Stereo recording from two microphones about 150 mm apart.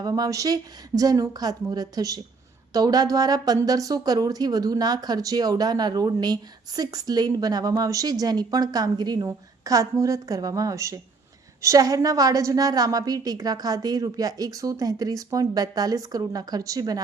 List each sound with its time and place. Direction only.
0.0 s speech: 25° right (ahead or behind)